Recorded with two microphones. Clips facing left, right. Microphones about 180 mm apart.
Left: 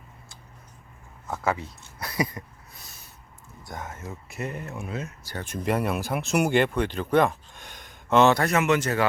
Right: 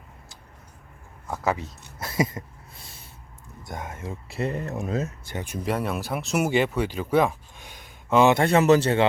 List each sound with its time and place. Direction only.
1.3 s a sound: 20° right (ahead or behind)
3.6 s speech: 25° right (ahead or behind); by 5.1 s 40° right (ahead or behind)
5.3 s speech: 10° right (ahead or behind)
5.7 s speech: centre (ahead or behind)
8.3 s speech: 25° right (ahead or behind)